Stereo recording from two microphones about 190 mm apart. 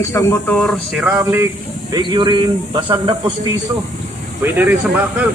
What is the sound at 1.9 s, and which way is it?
A man's voice, 25° right (ahead or behind).